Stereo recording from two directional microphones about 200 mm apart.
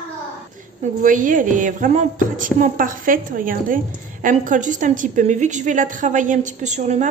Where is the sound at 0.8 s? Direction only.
40° right (ahead or behind).